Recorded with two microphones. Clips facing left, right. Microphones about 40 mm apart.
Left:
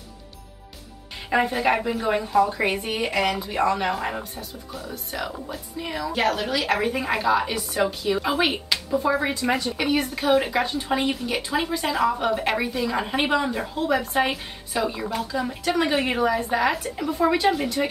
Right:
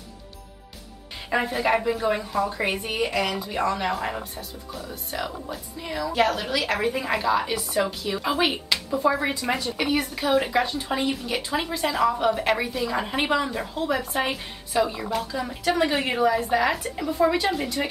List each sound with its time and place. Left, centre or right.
1.3 s a woman's voice: centre